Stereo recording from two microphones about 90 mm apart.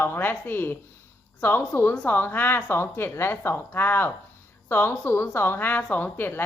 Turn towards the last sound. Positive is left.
turn(degrees=20)  # may be behind; listen again after turning